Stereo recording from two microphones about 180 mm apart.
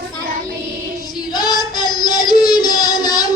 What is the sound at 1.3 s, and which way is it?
Child singing, 20° left (ahead or behind).